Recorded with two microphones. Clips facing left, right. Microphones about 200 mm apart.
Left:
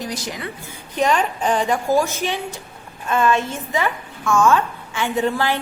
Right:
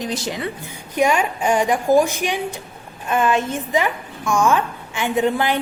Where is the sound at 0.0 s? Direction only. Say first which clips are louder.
Right 3 dB; 25° right (ahead or behind).